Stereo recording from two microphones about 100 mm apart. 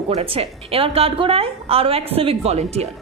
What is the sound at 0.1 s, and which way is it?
A woman's voice, 80° right.